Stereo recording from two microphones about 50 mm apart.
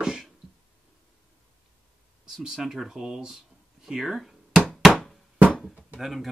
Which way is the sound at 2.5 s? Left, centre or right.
Centre.